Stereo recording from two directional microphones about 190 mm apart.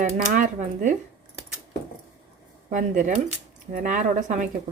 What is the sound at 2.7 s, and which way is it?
Speech, 40° right (ahead or behind).